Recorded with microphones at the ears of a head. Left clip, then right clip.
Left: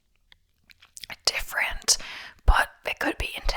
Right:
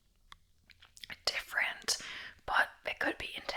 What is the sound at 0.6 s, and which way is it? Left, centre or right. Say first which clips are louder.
Speech: left 7 dB; left.